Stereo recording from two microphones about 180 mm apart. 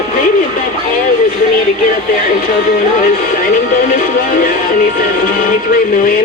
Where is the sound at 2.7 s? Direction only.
50° left (ahead or behind).